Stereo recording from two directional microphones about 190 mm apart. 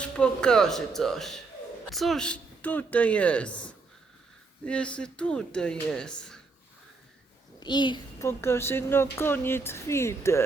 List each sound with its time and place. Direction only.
0.0 s a woman's voice: 5° left (ahead or behind)
4.6 s speech: 5° left (ahead or behind)
7.6 s a woman's voice: 25° left (ahead or behind)